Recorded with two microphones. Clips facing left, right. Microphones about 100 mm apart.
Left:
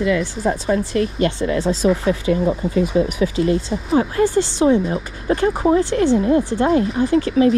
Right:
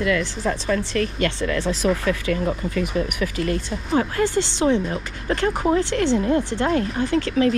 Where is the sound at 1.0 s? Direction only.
20° left (ahead or behind).